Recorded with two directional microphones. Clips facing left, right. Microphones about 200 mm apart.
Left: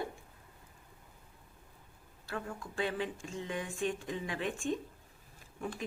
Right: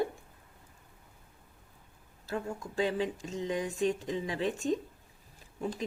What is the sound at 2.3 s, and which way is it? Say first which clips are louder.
Speech: right 5 dB; 25° right (ahead or behind).